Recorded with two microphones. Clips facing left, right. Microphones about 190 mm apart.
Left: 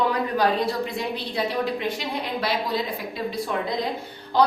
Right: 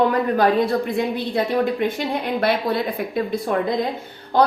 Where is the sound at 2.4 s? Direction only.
60° right (ahead or behind).